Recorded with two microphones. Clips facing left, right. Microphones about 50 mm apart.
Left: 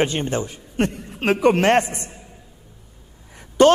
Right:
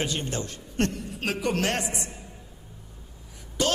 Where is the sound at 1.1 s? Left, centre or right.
Left.